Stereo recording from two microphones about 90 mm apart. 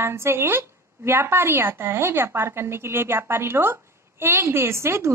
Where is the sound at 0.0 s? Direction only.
30° right (ahead or behind).